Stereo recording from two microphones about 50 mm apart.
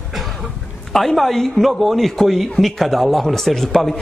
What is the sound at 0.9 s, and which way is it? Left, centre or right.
A man's voice, centre.